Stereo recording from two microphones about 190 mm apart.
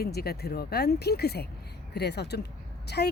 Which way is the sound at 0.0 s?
55° left (ahead or behind).